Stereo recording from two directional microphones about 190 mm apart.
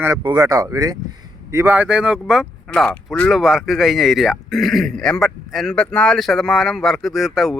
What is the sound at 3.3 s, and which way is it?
A man's voice, centre (ahead or behind).